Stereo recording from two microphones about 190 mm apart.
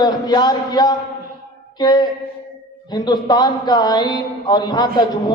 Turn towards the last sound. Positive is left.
turn(degrees=20)  # may be behind; listen again after turning